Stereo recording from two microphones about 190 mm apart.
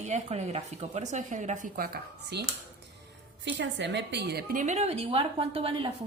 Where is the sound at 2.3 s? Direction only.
60° right (ahead or behind).